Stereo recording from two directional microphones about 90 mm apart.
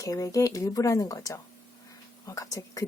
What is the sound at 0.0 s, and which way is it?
Speech, 40° left (ahead or behind).